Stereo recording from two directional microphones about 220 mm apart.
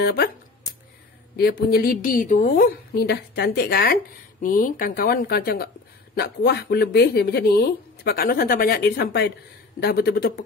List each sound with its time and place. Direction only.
0.0 s speech: 45° left (ahead or behind)
1.3 s a woman's voice: 45° left (ahead or behind)